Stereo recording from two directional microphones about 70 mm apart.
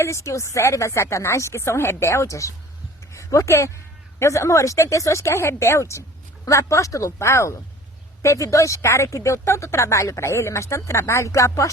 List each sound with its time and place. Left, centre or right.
0.0 s speech: left